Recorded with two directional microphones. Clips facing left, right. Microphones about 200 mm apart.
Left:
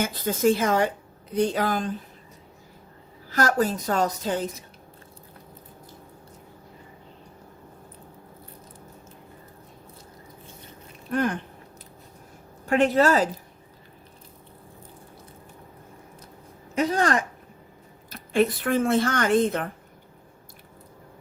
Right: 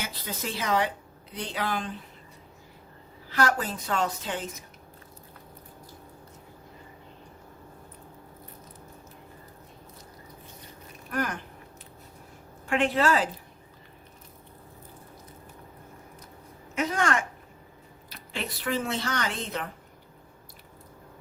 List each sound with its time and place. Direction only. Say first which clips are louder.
0.0 s speech: left 13 dB; 50° left (ahead or behind)
3.2 s a woman's voice: left 4 dB; 45° left (ahead or behind)
11.1 s speech: left 6 dB; 30° left (ahead or behind)
12.6 s a woman's voice: left 5 dB; 40° left (ahead or behind)
16.7 s a woman's voice: left 4 dB; 35° left (ahead or behind)
18.1 s speech: left 14 dB; 50° left (ahead or behind)